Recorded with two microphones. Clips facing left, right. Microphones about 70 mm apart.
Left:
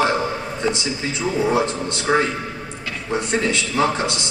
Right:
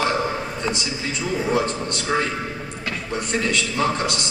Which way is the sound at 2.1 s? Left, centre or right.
Left.